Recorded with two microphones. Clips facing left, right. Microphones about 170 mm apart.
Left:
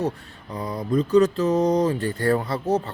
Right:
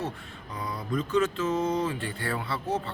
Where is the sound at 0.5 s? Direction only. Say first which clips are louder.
Left 7 dB; 35° left (ahead or behind).